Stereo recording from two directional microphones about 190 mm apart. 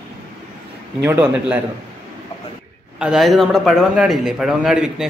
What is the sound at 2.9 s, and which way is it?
A man's voice, 5° right (ahead or behind).